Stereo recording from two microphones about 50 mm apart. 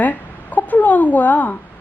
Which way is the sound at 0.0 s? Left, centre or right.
Left.